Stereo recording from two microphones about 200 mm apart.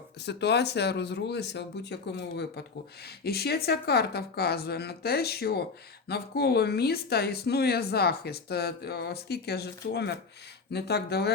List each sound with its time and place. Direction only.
0.2 s speech: 55° left (ahead or behind)